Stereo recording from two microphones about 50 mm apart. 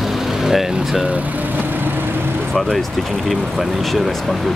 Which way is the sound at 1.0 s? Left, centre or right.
Right.